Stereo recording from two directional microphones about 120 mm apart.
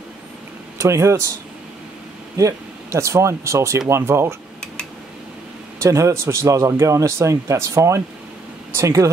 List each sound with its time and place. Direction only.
0.7 s a man's voice: 25° right (ahead or behind)
2.3 s a man's voice: 25° right (ahead or behind)
5.8 s a man's voice: 25° right (ahead or behind)